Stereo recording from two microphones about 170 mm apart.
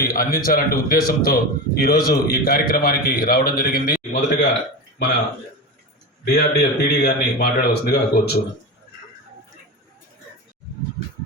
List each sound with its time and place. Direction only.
0.0 s a man's voice: 60° left (ahead or behind)
6.2 s a man's voice: 75° left (ahead or behind)